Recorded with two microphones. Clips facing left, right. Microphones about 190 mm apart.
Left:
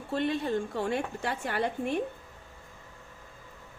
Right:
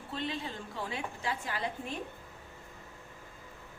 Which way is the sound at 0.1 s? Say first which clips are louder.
Left 9 dB; 55° left (ahead or behind).